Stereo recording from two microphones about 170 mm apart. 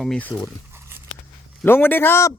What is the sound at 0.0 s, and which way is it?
Speech, 5° left (ahead or behind).